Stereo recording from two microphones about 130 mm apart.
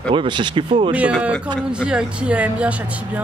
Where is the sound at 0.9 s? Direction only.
10° right (ahead or behind).